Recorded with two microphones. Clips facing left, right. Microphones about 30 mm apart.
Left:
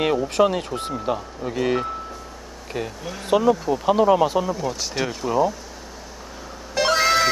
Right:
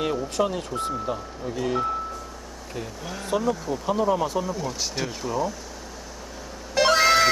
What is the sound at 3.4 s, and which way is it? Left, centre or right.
Speech, centre.